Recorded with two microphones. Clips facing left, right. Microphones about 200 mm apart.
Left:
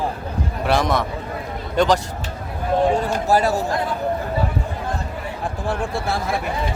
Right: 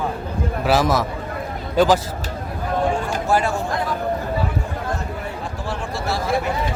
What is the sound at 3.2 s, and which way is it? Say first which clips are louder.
Speech: left 2 dB; 40° left (ahead or behind).